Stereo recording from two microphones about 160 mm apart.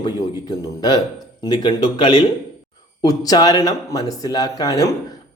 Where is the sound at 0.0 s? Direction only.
25° left (ahead or behind).